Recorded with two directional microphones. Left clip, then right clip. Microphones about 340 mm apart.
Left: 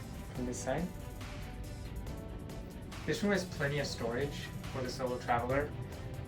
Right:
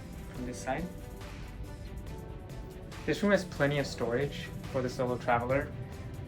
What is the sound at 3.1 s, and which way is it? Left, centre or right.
Speech, centre.